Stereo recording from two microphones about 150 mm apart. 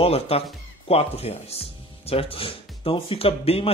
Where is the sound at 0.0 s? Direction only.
40° left (ahead or behind).